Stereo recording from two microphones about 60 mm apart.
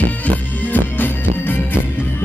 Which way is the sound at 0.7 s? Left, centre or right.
Left.